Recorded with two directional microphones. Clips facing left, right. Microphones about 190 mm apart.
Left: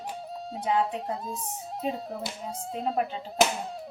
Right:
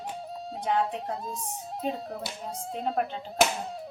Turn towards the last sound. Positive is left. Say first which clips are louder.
# left 1 dB
turn(degrees=0)  # may be behind; listen again after turning